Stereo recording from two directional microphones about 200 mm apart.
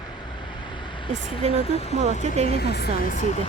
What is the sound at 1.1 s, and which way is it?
Speech, 35° right (ahead or behind).